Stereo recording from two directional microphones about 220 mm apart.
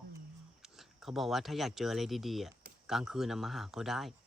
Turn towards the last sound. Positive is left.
turn(degrees=0)  # may be behind; listen again after turning